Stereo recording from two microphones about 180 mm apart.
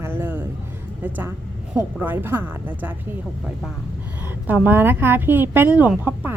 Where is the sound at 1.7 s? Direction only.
10° right (ahead or behind).